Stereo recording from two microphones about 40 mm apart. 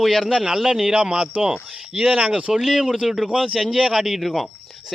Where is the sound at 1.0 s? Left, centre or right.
Right.